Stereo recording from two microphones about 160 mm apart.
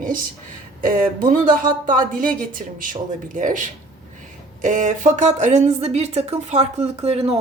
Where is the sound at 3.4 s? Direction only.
55° right (ahead or behind).